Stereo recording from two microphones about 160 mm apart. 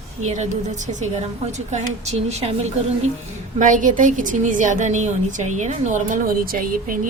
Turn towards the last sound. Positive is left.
turn(degrees=-55)  # may be behind; listen again after turning